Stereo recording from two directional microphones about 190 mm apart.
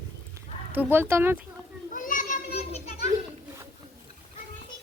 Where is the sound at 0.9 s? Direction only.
10° right (ahead or behind).